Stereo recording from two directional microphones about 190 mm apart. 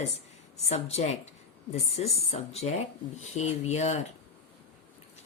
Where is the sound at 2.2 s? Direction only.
35° left (ahead or behind).